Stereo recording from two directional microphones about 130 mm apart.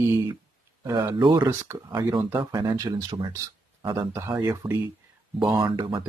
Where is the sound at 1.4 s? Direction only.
25° right (ahead or behind).